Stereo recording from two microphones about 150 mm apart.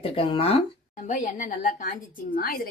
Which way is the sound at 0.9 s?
60° left (ahead or behind).